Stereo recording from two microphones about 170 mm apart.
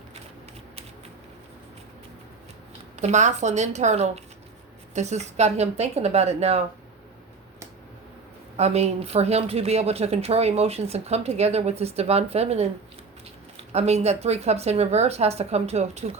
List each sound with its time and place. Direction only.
2.9 s speech: 40° right (ahead or behind)
8.5 s speech: 40° right (ahead or behind)
13.7 s speech: 40° right (ahead or behind)